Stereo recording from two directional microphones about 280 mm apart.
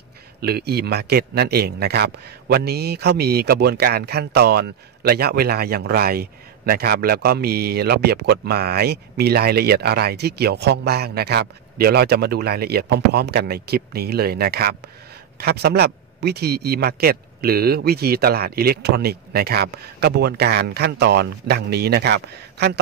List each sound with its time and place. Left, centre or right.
0.4 s a man's voice: right